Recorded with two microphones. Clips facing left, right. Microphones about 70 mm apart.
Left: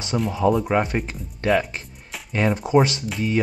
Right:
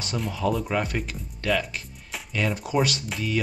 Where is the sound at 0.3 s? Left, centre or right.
Left.